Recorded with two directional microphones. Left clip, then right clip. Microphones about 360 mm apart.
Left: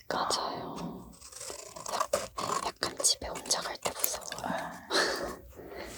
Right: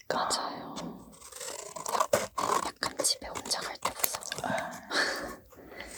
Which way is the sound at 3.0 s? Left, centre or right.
Left.